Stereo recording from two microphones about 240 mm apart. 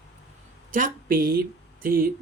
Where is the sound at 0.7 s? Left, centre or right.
Right.